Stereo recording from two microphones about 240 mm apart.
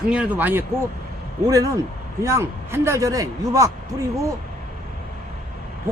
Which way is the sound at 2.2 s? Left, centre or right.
Centre.